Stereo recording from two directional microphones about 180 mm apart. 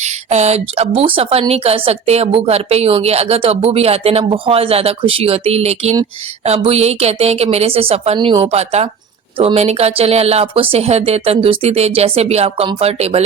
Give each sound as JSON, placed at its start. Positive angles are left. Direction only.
{"t": 0.0, "sound": "speech", "side_deg": -40}